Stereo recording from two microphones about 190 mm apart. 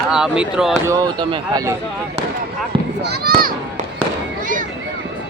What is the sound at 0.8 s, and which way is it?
Speech, 15° right (ahead or behind).